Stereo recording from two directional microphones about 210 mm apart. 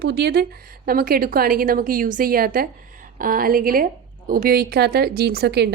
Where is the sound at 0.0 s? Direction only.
50° right (ahead or behind).